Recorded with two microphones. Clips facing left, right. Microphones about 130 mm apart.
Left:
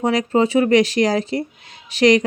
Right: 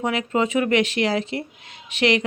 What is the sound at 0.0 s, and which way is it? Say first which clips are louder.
Speech: left 5 dB; 35° left (ahead or behind).